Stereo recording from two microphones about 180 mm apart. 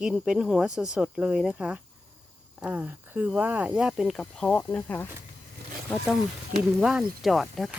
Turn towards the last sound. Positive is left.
turn(degrees=0)  # may be behind; listen again after turning